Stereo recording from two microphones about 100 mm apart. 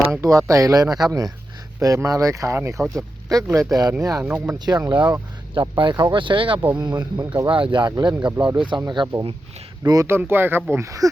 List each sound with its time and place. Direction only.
0.0 s speech: 30° right (ahead or behind)
4.2 s speech: 15° right (ahead or behind)
4.5 s speech: 45° right (ahead or behind)
6.7 s speech: 45° right (ahead or behind)
7.4 s speech: 60° right (ahead or behind)
9.8 s speech: 40° right (ahead or behind)
10.1 s speech: 20° right (ahead or behind)